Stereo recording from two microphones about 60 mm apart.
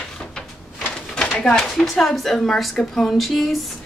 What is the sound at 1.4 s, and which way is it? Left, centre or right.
Speech, centre.